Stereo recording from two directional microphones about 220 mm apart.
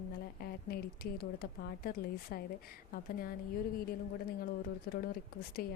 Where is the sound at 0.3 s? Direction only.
45° left (ahead or behind).